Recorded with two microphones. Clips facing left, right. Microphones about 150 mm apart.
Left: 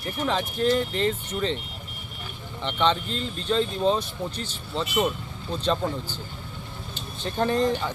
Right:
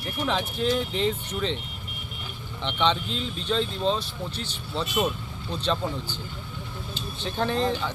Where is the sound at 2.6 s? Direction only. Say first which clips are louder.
Left 1 dB; 5° left (ahead or behind).